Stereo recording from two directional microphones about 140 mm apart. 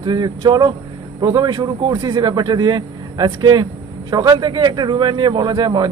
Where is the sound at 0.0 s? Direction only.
30° right (ahead or behind).